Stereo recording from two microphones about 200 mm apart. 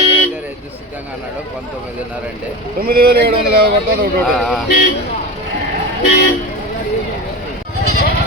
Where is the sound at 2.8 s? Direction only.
50° right (ahead or behind).